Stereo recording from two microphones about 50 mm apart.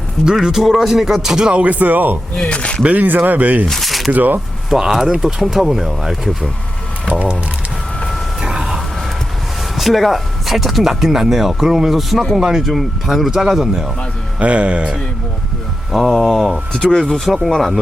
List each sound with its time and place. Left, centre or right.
0.3 s speech: centre
1.5 s speech: right
2.3 s speech: centre
2.8 s speech: right
3.7 s a sound: centre
4.1 s speech: right
4.7 s speech: centre
7.1 s speech: right
8.4 s vehicle: centre
9.7 s speech: centre
14.3 s speech: right
15.9 s speech: centre
16.7 s speech: centre
17.0 s speech: centre